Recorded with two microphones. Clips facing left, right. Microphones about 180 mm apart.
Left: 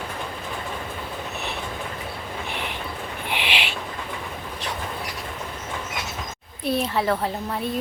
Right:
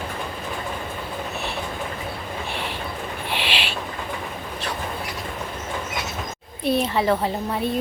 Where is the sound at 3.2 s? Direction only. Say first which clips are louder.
Even; 15° left (ahead or behind).